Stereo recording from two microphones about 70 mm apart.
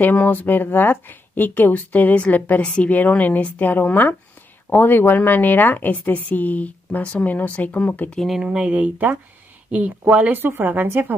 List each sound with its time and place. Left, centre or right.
0.0 s speech: left
8.3 s speech: centre; by 11.1 s right